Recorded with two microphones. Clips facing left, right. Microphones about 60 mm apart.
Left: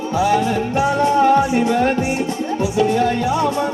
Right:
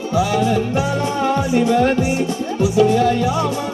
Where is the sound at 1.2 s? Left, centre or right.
Left.